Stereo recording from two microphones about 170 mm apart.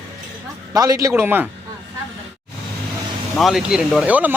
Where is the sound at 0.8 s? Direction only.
20° right (ahead or behind).